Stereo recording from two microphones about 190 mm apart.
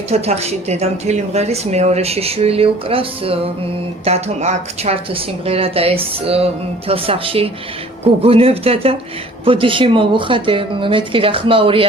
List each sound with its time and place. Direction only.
0.1 s speech: 35° right (ahead or behind)